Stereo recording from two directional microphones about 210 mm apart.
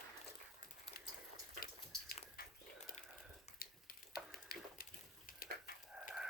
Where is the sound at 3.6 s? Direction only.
45° left (ahead or behind).